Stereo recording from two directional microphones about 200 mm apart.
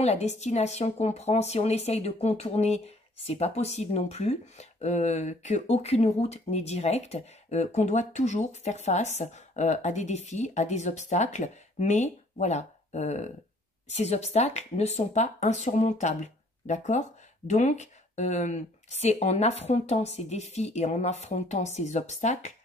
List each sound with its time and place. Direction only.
0.0 s speech: 35° left (ahead or behind)